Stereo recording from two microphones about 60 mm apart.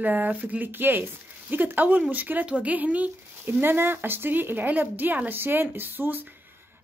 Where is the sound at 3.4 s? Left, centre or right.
Right.